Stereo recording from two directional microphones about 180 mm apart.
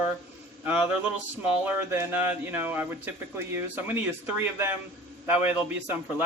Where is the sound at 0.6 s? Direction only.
10° right (ahead or behind).